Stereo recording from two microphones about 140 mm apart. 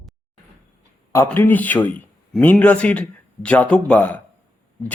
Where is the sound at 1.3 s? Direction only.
15° left (ahead or behind).